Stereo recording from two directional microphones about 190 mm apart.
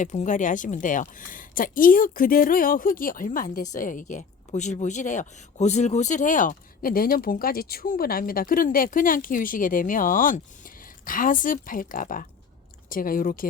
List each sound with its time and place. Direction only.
0.0 s speech: 40° left (ahead or behind)